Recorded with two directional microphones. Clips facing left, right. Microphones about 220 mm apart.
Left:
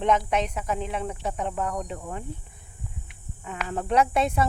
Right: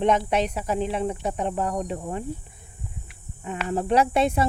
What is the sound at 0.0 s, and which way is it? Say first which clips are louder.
Speech: right 2 dB; 30° right (ahead or behind).